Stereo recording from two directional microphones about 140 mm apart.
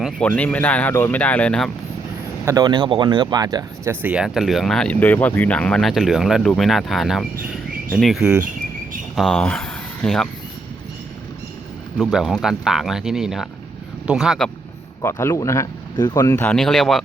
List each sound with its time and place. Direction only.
0.2 s speech: 10° left (ahead or behind)
2.4 s a man's voice: 20° right (ahead or behind)
2.6 s speech: 35° right (ahead or behind)
4.0 s speech: 5° right (ahead or behind)
11.9 s speech: centre (ahead or behind)
15.0 s speech: 20° left (ahead or behind)
16.6 s speech: centre (ahead or behind)